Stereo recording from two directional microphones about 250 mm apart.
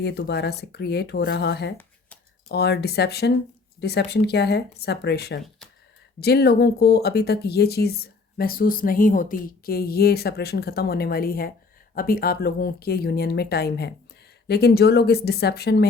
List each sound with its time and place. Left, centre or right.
0.0 s speech: left